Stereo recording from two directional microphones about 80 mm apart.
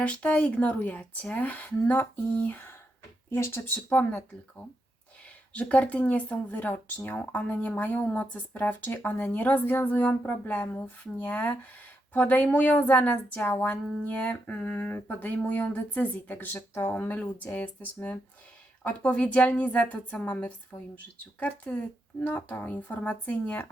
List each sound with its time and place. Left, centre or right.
0.0 s speech: centre; by 3.6 s left
3.8 s a woman's voice: centre